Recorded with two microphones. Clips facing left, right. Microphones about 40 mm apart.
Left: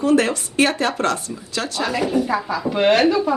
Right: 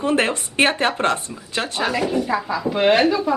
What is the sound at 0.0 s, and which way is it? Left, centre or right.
Speech, right.